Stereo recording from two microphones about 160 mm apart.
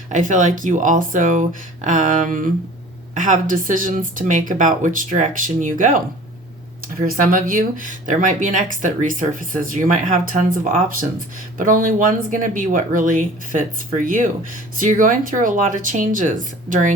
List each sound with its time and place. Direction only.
0.1 s speech: 55° right (ahead or behind)
7.0 s speech: 55° right (ahead or behind)
11.5 s speech: 60° right (ahead or behind)